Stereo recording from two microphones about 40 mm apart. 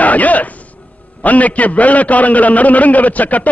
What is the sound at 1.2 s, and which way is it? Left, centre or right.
A man's voice, left.